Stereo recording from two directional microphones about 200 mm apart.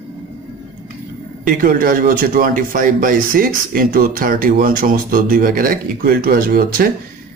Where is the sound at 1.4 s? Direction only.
45° right (ahead or behind).